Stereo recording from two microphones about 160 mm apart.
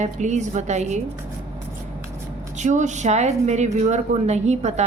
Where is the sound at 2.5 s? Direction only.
50° right (ahead or behind).